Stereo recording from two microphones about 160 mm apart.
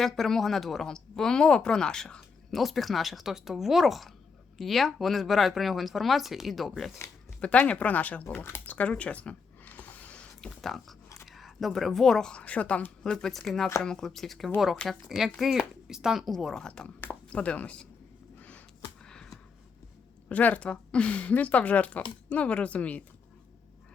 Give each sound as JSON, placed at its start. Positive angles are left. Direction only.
{"t": 0.0, "sound": "speech", "side_deg": 0}
{"t": 19.0, "sound": "a sound", "side_deg": 5}
{"t": 20.3, "sound": "speech", "side_deg": 10}